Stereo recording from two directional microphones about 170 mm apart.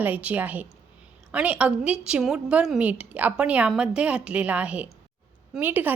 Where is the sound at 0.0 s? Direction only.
10° right (ahead or behind).